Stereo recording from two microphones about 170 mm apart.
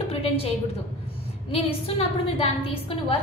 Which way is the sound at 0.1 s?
35° left (ahead or behind).